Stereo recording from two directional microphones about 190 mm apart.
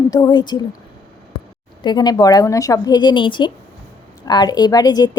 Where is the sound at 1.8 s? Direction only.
20° left (ahead or behind).